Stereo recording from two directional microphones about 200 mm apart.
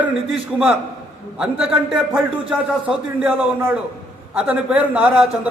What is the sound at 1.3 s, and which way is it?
A man's voice, 5° right (ahead or behind).